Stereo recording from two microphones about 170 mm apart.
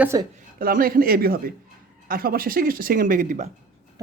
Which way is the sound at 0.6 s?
55° right (ahead or behind).